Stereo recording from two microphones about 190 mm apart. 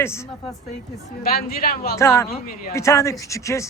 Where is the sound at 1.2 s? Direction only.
55° left (ahead or behind).